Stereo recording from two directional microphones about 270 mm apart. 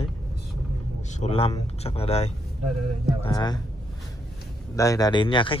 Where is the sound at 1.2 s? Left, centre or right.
Left.